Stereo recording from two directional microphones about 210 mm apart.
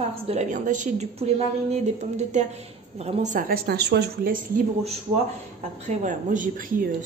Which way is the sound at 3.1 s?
40° right (ahead or behind).